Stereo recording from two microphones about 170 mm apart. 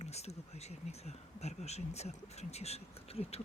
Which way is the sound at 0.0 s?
40° left (ahead or behind).